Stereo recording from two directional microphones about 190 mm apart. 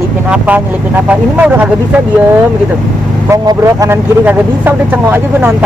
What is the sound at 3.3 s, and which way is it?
Speech, 15° right (ahead or behind).